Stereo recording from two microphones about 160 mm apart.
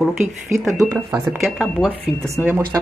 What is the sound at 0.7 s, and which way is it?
Speech, 20° right (ahead or behind).